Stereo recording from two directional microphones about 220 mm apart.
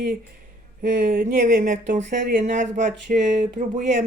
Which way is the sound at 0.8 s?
40° right (ahead or behind).